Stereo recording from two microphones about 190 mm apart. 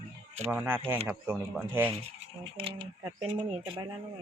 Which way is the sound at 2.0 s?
30° right (ahead or behind).